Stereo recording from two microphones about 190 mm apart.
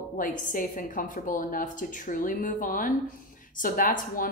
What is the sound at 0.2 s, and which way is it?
A woman's voice, 45° left (ahead or behind).